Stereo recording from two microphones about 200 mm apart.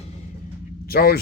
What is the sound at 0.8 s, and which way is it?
Speech, 50° left (ahead or behind).